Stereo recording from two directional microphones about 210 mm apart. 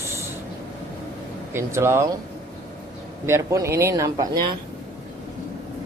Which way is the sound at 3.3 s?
15° right (ahead or behind).